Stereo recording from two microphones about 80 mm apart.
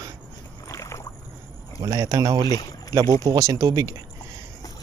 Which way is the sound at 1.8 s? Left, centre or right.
Right.